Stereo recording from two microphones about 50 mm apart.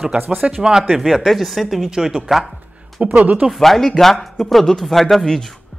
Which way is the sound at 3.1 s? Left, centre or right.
Right.